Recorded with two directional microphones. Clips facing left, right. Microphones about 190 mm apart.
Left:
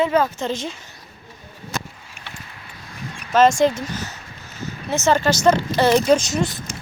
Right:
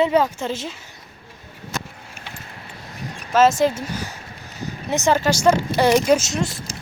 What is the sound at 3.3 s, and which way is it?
Speech, 5° right (ahead or behind).